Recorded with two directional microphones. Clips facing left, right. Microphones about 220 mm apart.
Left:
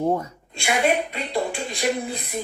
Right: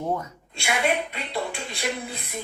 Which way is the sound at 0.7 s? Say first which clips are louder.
Left 4 dB; 35° left (ahead or behind).